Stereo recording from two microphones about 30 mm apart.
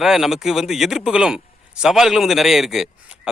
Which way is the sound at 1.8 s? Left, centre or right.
Centre.